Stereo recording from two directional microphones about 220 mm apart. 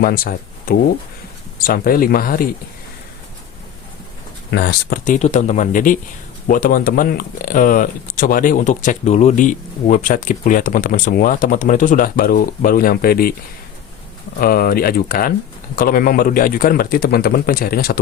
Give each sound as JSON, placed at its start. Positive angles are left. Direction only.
{"t": 0.0, "sound": "speech", "side_deg": 40}
{"t": 4.5, "sound": "speech", "side_deg": 45}
{"t": 14.3, "sound": "speech", "side_deg": 40}